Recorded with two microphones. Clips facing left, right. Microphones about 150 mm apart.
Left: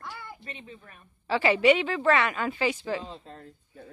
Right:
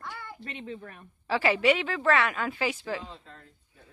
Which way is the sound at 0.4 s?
75° right (ahead or behind).